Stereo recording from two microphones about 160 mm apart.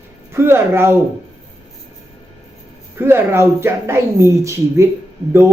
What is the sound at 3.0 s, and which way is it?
Speech, 15° right (ahead or behind).